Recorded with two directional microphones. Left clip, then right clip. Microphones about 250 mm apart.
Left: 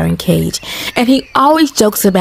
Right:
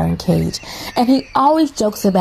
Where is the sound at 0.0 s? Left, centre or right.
Left.